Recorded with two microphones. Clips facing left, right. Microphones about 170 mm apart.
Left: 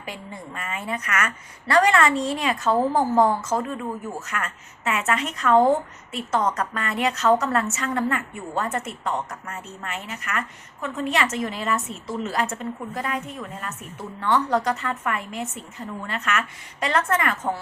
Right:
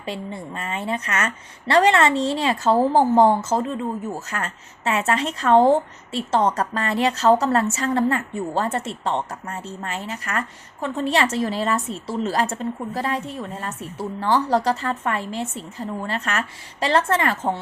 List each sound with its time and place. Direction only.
0.0 s a woman's voice: 30° right (ahead or behind)